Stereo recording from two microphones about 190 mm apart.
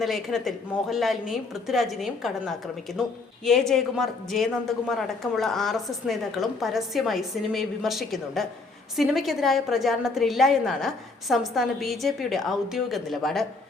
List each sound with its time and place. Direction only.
0.0 s a woman's voice: centre (ahead or behind)